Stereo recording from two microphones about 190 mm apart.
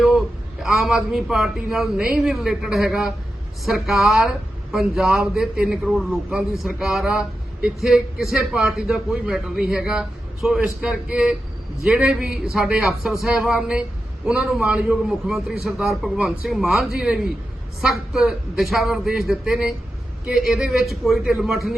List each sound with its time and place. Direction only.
0.6 s speech: centre (ahead or behind)